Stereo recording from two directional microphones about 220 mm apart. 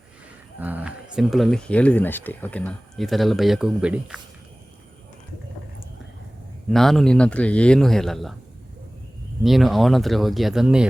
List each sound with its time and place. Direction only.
0.6 s speech: 5° right (ahead or behind)
6.7 s speech: centre (ahead or behind)
9.4 s speech: centre (ahead or behind)